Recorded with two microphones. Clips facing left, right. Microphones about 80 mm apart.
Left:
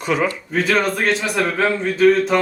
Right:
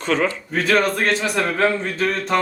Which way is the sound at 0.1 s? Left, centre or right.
Centre.